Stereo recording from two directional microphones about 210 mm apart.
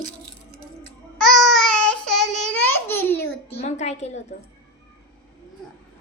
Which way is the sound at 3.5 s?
30° left (ahead or behind).